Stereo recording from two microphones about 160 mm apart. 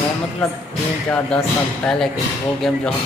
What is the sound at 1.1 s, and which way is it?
Speech, 5° left (ahead or behind).